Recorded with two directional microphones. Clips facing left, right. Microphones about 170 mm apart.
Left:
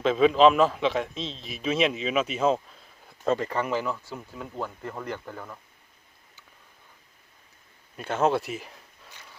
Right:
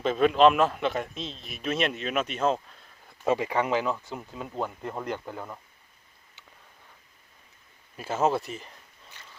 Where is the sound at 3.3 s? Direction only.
10° right (ahead or behind).